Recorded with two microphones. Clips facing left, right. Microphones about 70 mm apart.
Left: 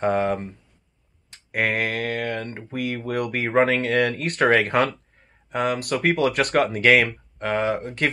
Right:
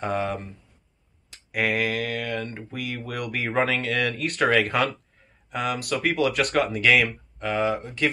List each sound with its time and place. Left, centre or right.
0.0 s speech: left